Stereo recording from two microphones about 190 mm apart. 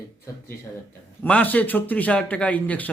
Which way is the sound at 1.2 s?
10° left (ahead or behind).